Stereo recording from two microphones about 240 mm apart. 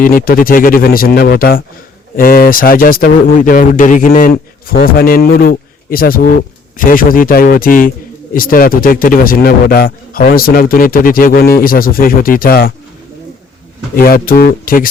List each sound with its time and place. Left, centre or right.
0.0 s a man's voice: left
13.9 s a man's voice: left